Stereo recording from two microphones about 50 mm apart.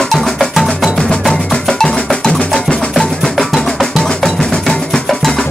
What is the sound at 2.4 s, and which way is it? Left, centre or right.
Music, centre.